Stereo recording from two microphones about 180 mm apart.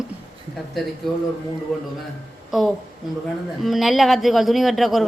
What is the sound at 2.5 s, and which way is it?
Speech, centre (ahead or behind).